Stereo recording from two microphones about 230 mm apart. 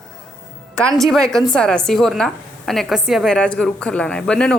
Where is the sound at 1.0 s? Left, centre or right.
Centre.